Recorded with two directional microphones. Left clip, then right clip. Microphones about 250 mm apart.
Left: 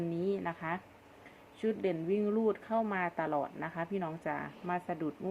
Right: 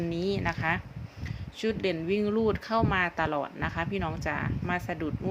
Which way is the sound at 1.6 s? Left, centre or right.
Centre.